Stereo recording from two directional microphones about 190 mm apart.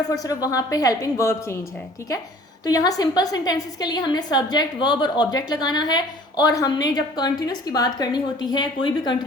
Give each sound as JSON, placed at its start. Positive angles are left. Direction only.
{"t": 0.1, "sound": "a woman's voice", "side_deg": 20}
{"t": 2.6, "sound": "a woman's voice", "side_deg": 20}